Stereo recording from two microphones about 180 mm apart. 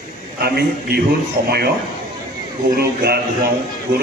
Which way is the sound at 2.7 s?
60° right (ahead or behind).